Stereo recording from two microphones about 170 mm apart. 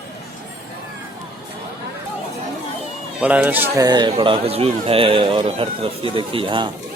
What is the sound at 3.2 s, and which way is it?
A man's voice, 10° right (ahead or behind).